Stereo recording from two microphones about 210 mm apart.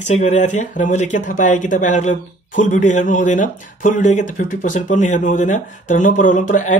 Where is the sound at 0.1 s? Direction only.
35° left (ahead or behind).